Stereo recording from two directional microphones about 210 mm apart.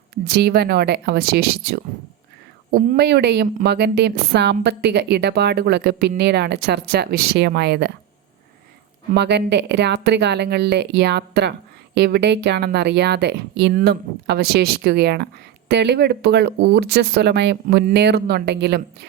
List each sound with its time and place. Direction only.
0.3 s a woman's voice: 50° right (ahead or behind)
9.1 s a woman's voice: 55° right (ahead or behind)